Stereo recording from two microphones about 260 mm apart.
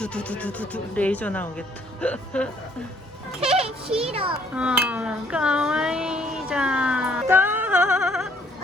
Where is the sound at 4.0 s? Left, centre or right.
Right.